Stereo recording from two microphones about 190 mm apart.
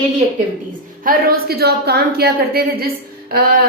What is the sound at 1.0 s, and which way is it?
A woman's voice, 55° right (ahead or behind).